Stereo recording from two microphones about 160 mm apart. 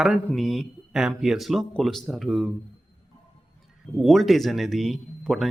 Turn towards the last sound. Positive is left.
turn(degrees=0)  # may be behind; listen again after turning